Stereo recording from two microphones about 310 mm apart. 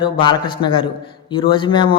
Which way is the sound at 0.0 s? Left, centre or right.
Centre.